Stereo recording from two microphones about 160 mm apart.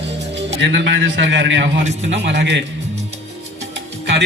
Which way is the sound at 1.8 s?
45° right (ahead or behind).